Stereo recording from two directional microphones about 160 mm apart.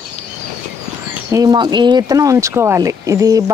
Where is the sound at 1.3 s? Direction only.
25° right (ahead or behind).